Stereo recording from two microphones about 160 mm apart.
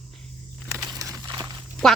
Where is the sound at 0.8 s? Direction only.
20° right (ahead or behind).